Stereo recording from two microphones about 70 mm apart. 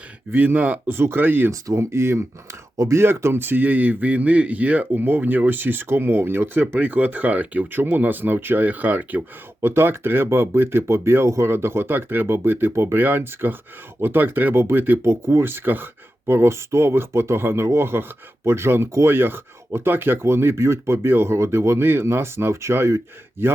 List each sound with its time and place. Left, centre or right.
0.3 s speech: right
0.9 s speech: right
1.5 s speech: right
2.7 s speech: right
3.0 s speech: right